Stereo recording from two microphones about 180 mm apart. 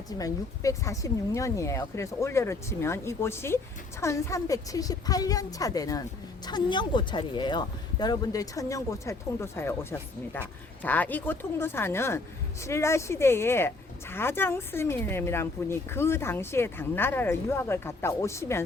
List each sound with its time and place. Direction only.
0.2 s a woman's voice: 20° left (ahead or behind)